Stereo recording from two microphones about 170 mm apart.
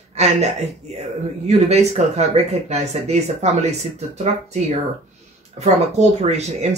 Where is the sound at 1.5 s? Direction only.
40° right (ahead or behind).